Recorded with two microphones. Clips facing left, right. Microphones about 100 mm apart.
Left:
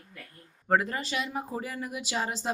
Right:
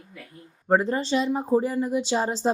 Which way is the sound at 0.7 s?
30° right (ahead or behind).